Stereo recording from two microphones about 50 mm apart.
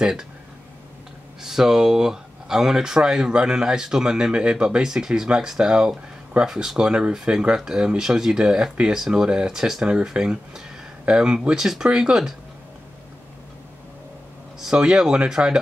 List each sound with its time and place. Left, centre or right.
0.0 s speech: centre
1.4 s speech: centre
14.6 s speech: centre